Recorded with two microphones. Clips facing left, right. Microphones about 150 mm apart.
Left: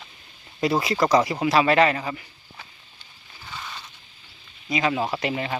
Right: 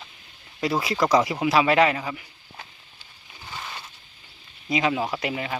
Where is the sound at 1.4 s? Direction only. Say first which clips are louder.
Left 1 dB; 10° right (ahead or behind).